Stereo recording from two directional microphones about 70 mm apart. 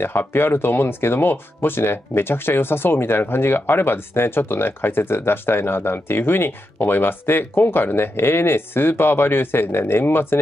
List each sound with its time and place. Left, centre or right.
0.0 s speech: left